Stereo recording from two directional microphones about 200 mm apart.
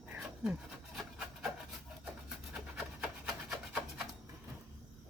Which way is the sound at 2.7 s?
5° right (ahead or behind).